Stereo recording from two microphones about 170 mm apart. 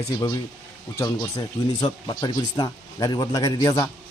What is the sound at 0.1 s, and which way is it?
Speech, 20° left (ahead or behind).